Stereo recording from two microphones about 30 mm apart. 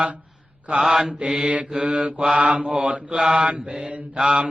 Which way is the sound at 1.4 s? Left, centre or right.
Right.